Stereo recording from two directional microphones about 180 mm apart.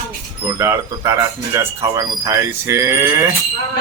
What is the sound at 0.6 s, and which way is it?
Speech, 15° right (ahead or behind).